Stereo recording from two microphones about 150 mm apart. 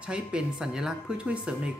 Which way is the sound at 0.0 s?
5° right (ahead or behind).